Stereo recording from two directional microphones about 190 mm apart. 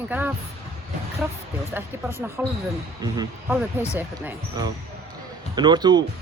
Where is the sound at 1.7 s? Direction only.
10° right (ahead or behind).